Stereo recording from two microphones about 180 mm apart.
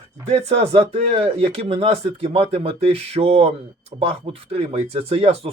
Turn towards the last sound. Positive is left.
turn(degrees=-35)  # may be behind; listen again after turning